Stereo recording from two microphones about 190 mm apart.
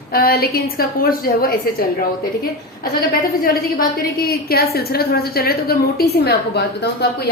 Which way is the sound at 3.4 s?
50° left (ahead or behind).